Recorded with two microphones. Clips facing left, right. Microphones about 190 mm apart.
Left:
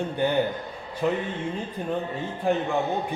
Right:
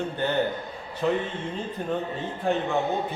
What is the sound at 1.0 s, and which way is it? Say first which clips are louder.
Speech: even; 10° left (ahead or behind).